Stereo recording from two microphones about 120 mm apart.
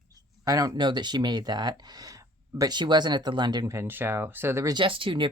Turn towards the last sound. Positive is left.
turn(degrees=-45)  # may be behind; listen again after turning